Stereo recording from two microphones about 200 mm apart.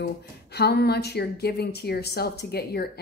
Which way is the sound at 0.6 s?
55° left (ahead or behind).